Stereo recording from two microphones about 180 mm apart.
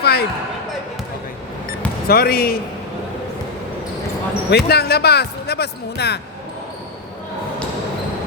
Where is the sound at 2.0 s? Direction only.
60° left (ahead or behind).